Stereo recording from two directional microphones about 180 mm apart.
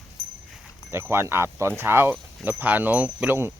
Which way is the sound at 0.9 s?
15° right (ahead or behind).